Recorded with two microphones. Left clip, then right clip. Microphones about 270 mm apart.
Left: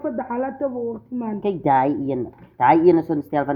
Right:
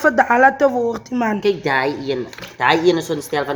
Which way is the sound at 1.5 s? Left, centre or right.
Left.